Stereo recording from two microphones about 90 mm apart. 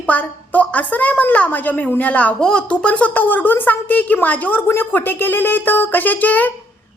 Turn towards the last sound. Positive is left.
turn(degrees=20)  # may be behind; listen again after turning